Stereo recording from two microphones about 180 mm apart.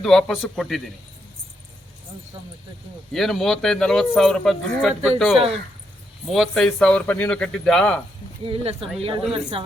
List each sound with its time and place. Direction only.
0.0 s speech: centre (ahead or behind)
3.1 s speech: centre (ahead or behind)
8.4 s speech: 30° right (ahead or behind)